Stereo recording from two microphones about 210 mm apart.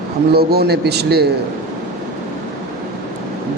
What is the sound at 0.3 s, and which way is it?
Speech, 50° right (ahead or behind).